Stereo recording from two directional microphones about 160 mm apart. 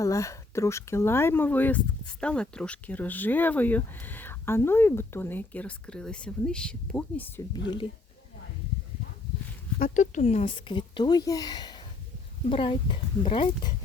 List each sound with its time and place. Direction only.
0.0 s speech: 20° left (ahead or behind)
7.5 s speech: 25° left (ahead or behind)
9.7 s speech: 55° left (ahead or behind); by 13.7 s 30° left (ahead or behind)